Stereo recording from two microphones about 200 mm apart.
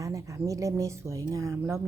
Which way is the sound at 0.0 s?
15° right (ahead or behind).